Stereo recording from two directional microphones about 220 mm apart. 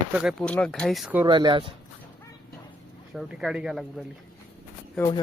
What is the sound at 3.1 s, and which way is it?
Speech, centre (ahead or behind).